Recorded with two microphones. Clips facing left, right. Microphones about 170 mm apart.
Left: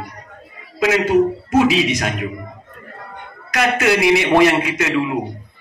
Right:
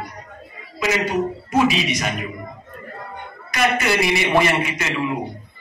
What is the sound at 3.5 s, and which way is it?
A man's voice, 90° left.